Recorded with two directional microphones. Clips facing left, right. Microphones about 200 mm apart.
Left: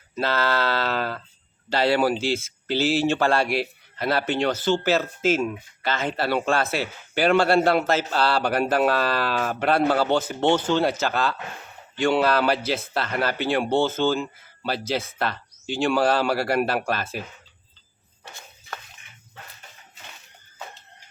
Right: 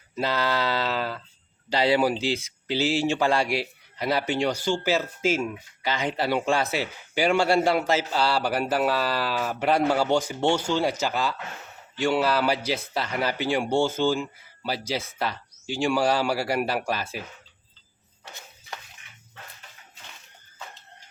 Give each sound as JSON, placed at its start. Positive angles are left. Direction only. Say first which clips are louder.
{"t": 0.2, "sound": "speech", "louder": "left 2 dB", "side_deg": -15}
{"t": 3.4, "sound": "a man's voice", "louder": "left 2 dB", "side_deg": 55}
{"t": 3.9, "sound": "speech", "louder": "left 1 dB", "side_deg": -15}